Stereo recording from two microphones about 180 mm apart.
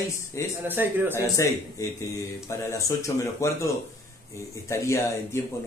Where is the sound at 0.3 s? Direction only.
15° left (ahead or behind).